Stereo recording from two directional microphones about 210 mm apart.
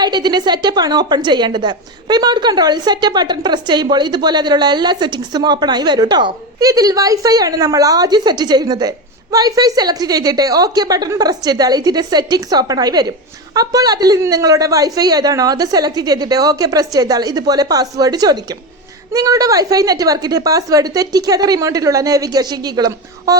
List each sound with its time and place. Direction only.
0.0 s a woman's voice: 20° right (ahead or behind)